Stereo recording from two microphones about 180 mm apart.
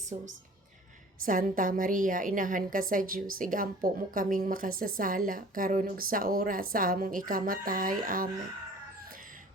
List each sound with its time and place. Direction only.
0.1 s a woman's voice: 40° right (ahead or behind)